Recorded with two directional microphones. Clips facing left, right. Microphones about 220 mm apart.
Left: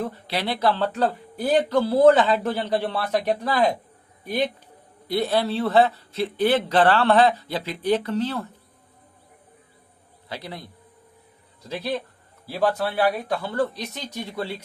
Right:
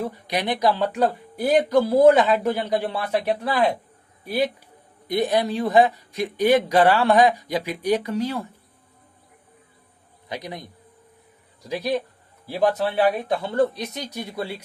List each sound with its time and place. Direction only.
0.0 s speech: 15° right (ahead or behind)
10.2 s speech: 15° right (ahead or behind)